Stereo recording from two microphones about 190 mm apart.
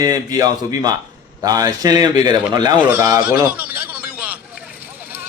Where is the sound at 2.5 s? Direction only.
20° right (ahead or behind).